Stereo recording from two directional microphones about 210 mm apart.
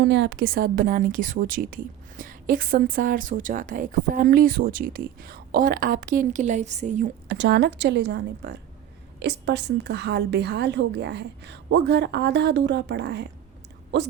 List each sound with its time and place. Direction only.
0.0 s a woman's voice: 55° right (ahead or behind); by 7.1 s 35° right (ahead or behind)
7.3 s a woman's voice: 55° right (ahead or behind)